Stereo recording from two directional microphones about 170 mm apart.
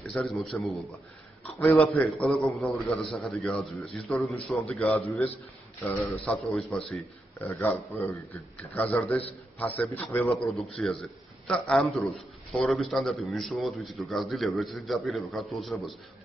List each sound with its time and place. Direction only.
0.0 s a man's voice: 5° left (ahead or behind)
7.4 s a man's voice: 15° left (ahead or behind)